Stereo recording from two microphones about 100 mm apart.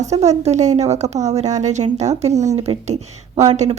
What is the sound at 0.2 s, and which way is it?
Speech, 90° right.